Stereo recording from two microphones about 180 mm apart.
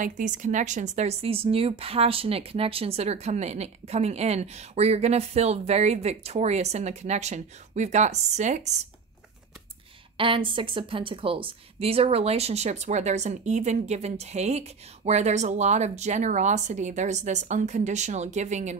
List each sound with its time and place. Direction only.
0.0 s speech: 45° right (ahead or behind)
10.1 s speech: 30° right (ahead or behind)